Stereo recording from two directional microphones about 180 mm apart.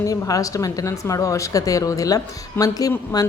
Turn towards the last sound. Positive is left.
turn(degrees=20)  # may be behind; listen again after turning